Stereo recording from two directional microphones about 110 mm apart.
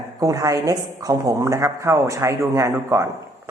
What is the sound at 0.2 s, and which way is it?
Speech, 30° right (ahead or behind).